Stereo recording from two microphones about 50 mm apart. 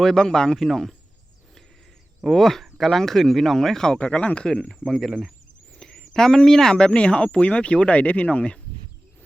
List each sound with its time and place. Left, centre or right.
0.0 s speech: centre
2.2 s speech: centre
3.9 s speech: left
4.4 s speech: centre